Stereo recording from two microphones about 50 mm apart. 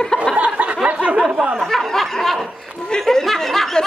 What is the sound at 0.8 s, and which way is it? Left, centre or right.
Speech, right.